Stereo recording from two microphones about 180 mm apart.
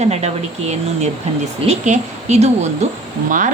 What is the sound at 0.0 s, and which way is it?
Speech, 35° right (ahead or behind).